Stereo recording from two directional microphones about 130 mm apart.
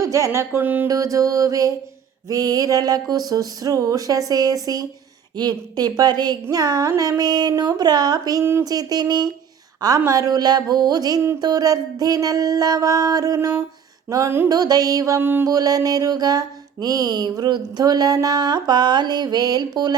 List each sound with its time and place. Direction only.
0.0 s mantra: 25° right (ahead or behind)
0.9 s mantra: 25° right (ahead or behind)
5.4 s speech: 30° right (ahead or behind)
10.1 s mantra: 30° right (ahead or behind)
14.5 s mantra: 30° right (ahead or behind)
15.4 s mantra: 30° right (ahead or behind)